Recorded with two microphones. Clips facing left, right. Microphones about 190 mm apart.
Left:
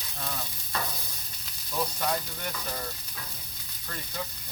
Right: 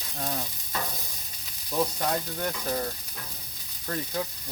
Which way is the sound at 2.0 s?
40° right (ahead or behind).